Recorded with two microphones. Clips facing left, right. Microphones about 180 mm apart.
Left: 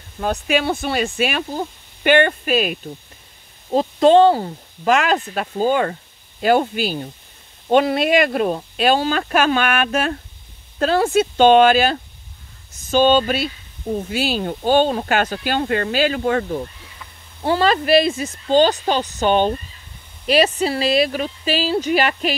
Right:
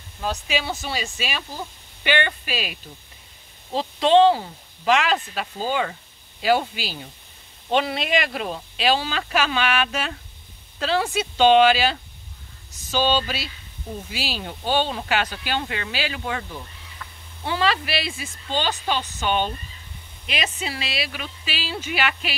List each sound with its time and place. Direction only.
0.2 s speech: 55° left (ahead or behind)